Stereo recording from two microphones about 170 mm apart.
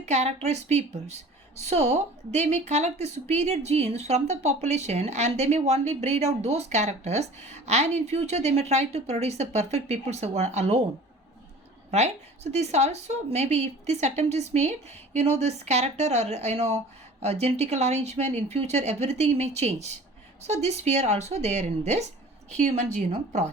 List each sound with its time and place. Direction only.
0.0 s speech: 40° right (ahead or behind)
11.9 s speech: 40° right (ahead or behind)